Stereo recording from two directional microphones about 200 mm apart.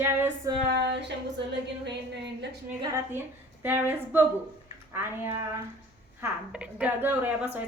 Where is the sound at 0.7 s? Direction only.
60° right (ahead or behind).